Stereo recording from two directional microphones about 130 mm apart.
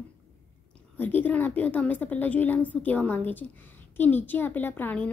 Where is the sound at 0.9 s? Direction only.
15° left (ahead or behind).